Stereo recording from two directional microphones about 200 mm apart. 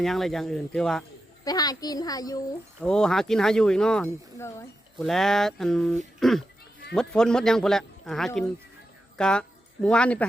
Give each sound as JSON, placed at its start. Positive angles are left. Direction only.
{"t": 0.0, "sound": "speech", "side_deg": 0}
{"t": 1.5, "sound": "a child's voice", "side_deg": 20}
{"t": 2.8, "sound": "speech", "side_deg": 5}
{"t": 4.9, "sound": "speech", "side_deg": 0}